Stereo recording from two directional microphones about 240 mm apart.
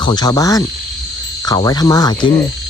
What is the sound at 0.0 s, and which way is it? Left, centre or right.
Speech, centre.